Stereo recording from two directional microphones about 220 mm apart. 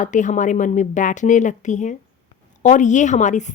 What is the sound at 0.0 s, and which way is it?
A woman's voice, 35° left (ahead or behind).